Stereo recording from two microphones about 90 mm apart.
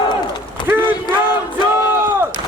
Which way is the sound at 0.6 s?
60° left (ahead or behind).